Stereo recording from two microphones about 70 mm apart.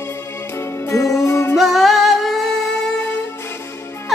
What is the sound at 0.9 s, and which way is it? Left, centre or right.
Music, left.